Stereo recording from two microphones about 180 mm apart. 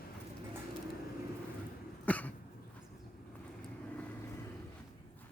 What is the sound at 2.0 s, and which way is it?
Cough, 10° left (ahead or behind).